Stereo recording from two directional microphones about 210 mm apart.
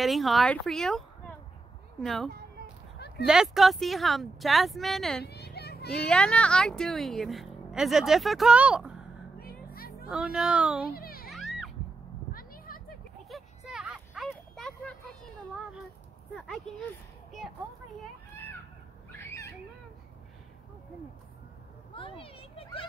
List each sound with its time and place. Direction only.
0.0 s a woman's voice: centre (ahead or behind)
5.2 s children playing: 50° left (ahead or behind)
6.0 s a woman's voice: 5° left (ahead or behind)
9.4 s music: 45° left (ahead or behind)
10.0 s a woman's voice: 5° right (ahead or behind)
10.9 s a child's voice: 45° left (ahead or behind)
11.2 s music: centre (ahead or behind)
12.3 s a sound: 45° left (ahead or behind)
13.3 s a sound: 5° right (ahead or behind)
16.3 s a woman's voice: centre (ahead or behind)
18.0 s children playing: 10° left (ahead or behind)
19.1 s a sound: 15° left (ahead or behind)
21.9 s a sound: 25° left (ahead or behind)